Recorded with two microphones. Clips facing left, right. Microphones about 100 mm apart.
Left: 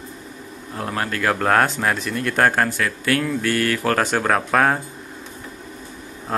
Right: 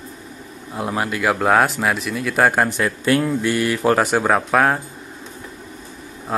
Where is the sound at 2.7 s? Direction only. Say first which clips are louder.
Right 3 dB; 20° right (ahead or behind); by 4.8 s 5° right (ahead or behind).